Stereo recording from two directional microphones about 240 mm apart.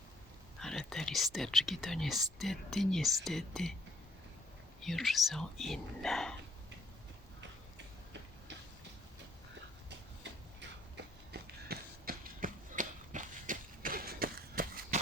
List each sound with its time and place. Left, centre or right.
0.6 s speech: centre
4.8 s speech: centre
10.6 s a sound: right